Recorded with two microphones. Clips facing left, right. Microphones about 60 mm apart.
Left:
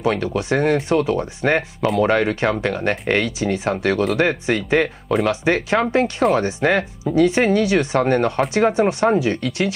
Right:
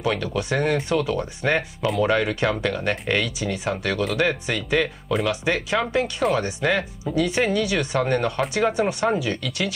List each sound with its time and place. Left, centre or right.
0.0 s speech: left